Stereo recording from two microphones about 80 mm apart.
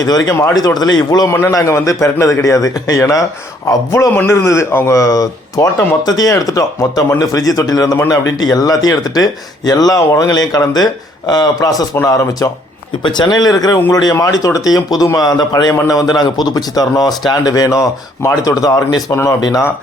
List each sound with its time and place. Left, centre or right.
0.0 s speech: left
1.3 s speech: left
4.1 s a man's voice: left
4.9 s speech: left
13.0 s speech: left
14.2 s speech: left
15.7 s speech: left
19.1 s a man's voice: left
19.4 s speech: left